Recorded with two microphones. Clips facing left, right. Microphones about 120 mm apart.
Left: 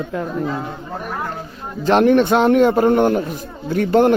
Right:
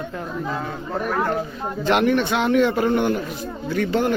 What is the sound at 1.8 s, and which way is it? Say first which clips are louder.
A man's voice: left 6 dB; 40° left (ahead or behind).